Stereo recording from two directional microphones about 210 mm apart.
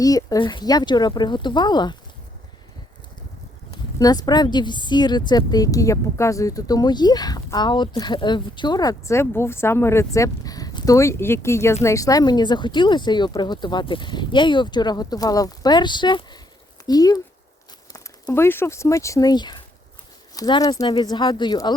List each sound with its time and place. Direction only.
0.0 s a woman's voice: 15° left (ahead or behind)
3.9 s a woman's voice: 20° left (ahead or behind)